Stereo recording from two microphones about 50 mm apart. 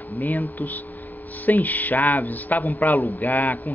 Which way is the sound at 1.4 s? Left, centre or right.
Left.